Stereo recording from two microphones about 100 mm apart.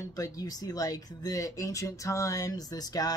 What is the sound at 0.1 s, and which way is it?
Speech, 35° left (ahead or behind).